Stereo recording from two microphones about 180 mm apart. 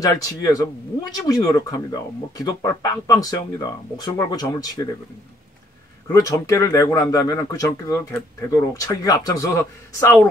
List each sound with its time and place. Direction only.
0.0 s speech: 20° left (ahead or behind)
6.1 s speech: 15° left (ahead or behind)